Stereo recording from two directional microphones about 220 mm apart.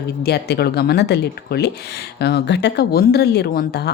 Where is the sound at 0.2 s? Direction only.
45° left (ahead or behind).